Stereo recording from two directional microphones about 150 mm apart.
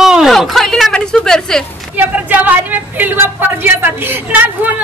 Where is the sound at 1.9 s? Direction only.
10° right (ahead or behind).